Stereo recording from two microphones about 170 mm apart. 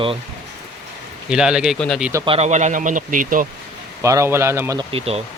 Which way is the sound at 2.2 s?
35° right (ahead or behind).